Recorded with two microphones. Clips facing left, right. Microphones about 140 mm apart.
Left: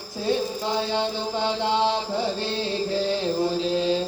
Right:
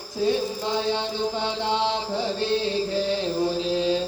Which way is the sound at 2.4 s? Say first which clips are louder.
Right 3 dB; 15° right (ahead or behind).